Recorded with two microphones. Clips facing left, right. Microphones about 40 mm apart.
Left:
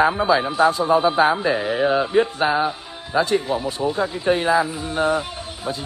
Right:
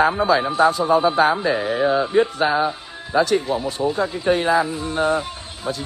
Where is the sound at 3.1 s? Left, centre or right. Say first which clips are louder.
Right 2 dB; centre.